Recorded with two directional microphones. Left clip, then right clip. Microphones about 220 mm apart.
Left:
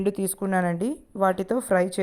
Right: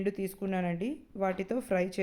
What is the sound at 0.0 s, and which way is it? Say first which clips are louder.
Speech: left 7 dB; 30° left (ahead or behind).